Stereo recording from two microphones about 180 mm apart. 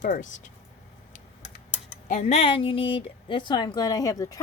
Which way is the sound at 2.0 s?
45° left (ahead or behind).